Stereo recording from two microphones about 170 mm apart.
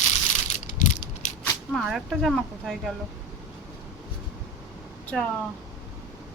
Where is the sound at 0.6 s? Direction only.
50° left (ahead or behind).